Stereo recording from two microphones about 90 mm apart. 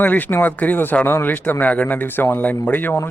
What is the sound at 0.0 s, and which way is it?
Speech, 20° left (ahead or behind).